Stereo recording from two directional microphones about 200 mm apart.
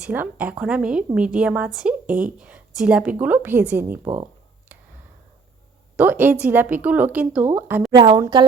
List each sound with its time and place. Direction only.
0.0 s a woman's voice: 10° right (ahead or behind)
6.0 s a woman's voice: 10° right (ahead or behind)
7.9 s a woman's voice: 20° right (ahead or behind)